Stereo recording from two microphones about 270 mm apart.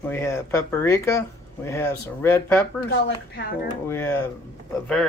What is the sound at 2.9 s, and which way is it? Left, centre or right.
Speech, left.